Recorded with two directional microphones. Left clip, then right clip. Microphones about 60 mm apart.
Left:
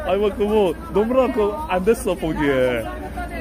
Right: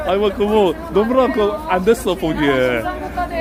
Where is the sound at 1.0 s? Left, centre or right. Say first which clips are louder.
Right 2 dB; right.